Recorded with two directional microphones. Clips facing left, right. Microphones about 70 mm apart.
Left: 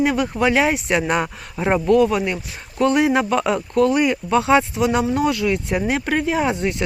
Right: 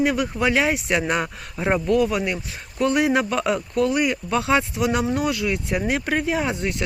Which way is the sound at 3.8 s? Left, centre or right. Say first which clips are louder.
Left 5 dB; centre.